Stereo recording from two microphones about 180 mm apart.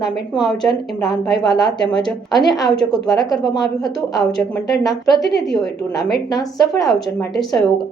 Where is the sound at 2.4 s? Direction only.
20° left (ahead or behind).